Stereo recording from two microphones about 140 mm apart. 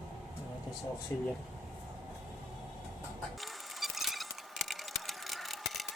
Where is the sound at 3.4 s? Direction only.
Centre (ahead or behind).